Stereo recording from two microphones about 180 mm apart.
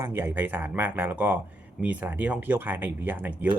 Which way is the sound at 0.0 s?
15° right (ahead or behind).